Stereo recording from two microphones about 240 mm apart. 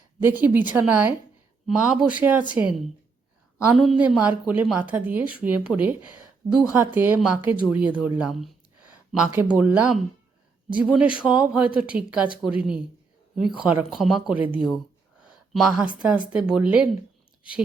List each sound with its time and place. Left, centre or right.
0.2 s a woman's voice: centre
15.2 s a sound: centre
16.0 s a woman's voice: centre